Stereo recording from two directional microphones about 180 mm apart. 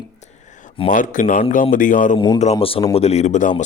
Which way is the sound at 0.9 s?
45° left (ahead or behind).